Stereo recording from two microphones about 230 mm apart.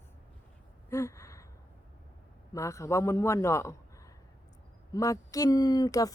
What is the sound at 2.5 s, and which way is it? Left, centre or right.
Speech, centre.